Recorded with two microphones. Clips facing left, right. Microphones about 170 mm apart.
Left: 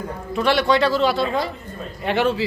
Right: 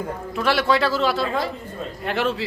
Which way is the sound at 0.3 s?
Centre (ahead or behind).